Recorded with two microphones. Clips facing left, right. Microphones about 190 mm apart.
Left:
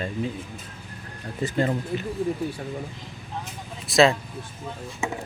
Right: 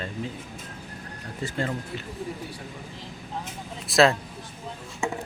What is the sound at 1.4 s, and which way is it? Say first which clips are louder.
Speech: left 5 dB; 20° left (ahead or behind).